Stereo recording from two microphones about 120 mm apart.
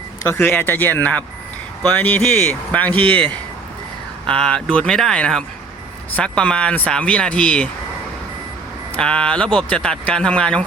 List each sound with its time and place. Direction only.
0.2 s speech: 20° left (ahead or behind)
4.3 s speech: 5° left (ahead or behind)
9.0 s speech: 10° left (ahead or behind)